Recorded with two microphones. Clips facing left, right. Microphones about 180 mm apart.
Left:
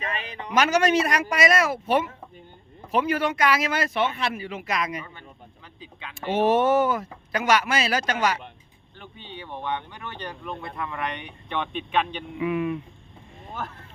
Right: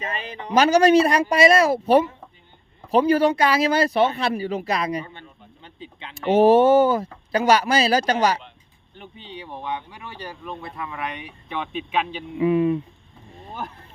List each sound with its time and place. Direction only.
0.0 s speech: 30° right (ahead or behind)
2.9 s speech: 35° right (ahead or behind)
5.6 s a sound: 30° right (ahead or behind)
6.3 s speech: 35° right (ahead or behind)
9.0 s speech: 15° right (ahead or behind)
12.4 s speech: 30° right (ahead or behind)
13.5 s speech: 15° right (ahead or behind)